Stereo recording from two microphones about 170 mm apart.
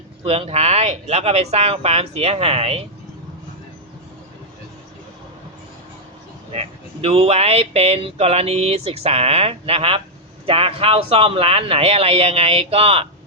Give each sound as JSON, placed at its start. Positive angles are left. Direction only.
{"t": 0.3, "sound": "speech", "side_deg": -35}
{"t": 6.5, "sound": "speech", "side_deg": -35}